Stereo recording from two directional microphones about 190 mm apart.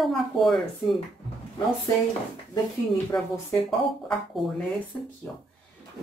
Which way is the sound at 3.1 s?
20° left (ahead or behind).